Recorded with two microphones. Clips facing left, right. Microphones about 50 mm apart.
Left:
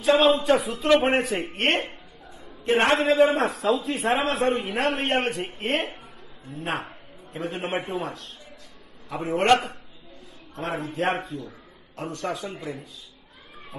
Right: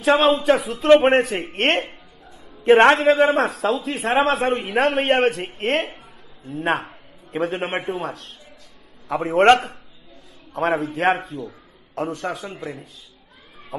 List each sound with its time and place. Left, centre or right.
0.0 s speech: right
0.4 s a man's voice: right
1.0 s a man's voice: right
3.3 s a man's voice: right
4.1 s a man's voice: centre
5.0 s a man's voice: right
6.6 s a man's voice: right
7.8 s a man's voice: centre
9.4 s a man's voice: right
10.5 s a man's voice: right
11.9 s a man's voice: right
12.5 s a man's voice: centre